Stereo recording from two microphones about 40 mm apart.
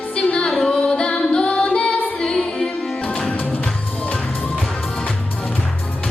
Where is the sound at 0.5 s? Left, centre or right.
Centre.